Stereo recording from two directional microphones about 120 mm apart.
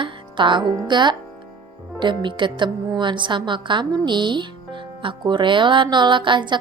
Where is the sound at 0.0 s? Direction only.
40° right (ahead or behind).